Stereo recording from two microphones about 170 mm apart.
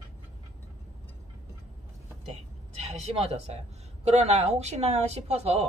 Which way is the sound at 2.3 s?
40° right (ahead or behind).